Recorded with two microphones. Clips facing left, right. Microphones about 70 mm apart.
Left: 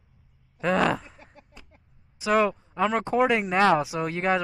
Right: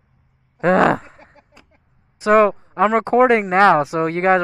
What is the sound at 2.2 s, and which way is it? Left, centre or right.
Speech, right.